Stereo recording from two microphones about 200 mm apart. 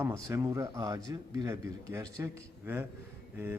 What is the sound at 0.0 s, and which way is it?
A man's voice, 15° right (ahead or behind).